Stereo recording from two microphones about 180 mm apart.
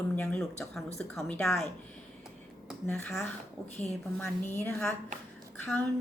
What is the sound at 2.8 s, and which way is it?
Speech, 10° left (ahead or behind).